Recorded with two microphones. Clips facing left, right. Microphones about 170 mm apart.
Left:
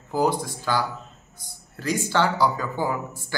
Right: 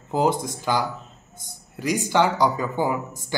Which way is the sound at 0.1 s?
20° right (ahead or behind).